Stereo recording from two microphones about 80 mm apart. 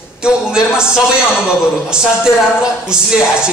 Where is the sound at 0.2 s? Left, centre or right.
Centre.